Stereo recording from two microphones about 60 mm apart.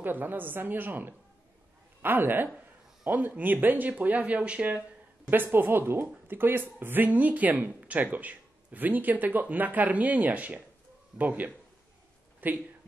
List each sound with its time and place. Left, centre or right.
0.0 s a woman's voice: right
5.3 s a woman's voice: right